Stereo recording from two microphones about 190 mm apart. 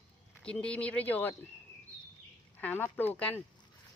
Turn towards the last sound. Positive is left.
turn(degrees=10)  # may be behind; listen again after turning